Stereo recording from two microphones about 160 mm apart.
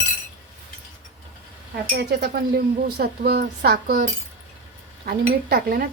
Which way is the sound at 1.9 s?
90° right.